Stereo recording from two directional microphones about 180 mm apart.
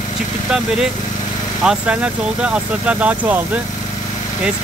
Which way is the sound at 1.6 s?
5° right (ahead or behind).